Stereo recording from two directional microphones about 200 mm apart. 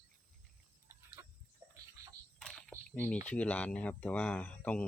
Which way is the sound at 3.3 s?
5° left (ahead or behind).